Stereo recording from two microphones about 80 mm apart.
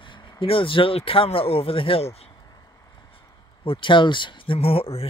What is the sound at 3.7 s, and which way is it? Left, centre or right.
Speech, left.